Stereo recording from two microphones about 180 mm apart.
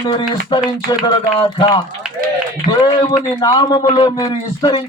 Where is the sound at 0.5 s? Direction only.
25° left (ahead or behind).